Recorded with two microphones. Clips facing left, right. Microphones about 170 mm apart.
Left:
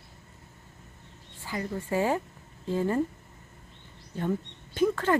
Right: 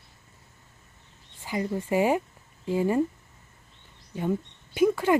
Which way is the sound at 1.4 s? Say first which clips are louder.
Right 4 dB; 20° right (ahead or behind).